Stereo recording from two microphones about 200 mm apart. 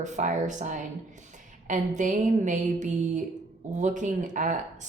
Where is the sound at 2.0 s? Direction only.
40° right (ahead or behind).